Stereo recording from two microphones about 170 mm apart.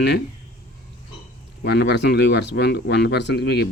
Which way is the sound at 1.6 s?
80° left.